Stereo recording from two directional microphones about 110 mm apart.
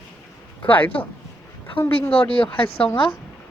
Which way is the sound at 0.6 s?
15° left (ahead or behind).